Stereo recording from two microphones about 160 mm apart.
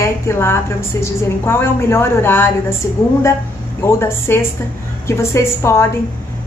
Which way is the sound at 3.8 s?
15° left (ahead or behind).